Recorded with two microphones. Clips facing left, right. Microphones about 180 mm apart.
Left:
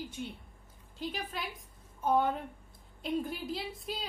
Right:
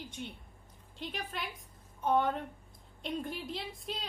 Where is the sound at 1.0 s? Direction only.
Centre (ahead or behind).